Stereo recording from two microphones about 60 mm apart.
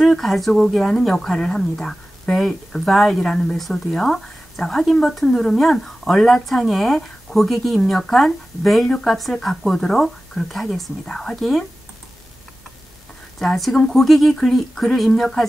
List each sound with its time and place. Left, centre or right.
0.0 s speech: centre
13.4 s speech: centre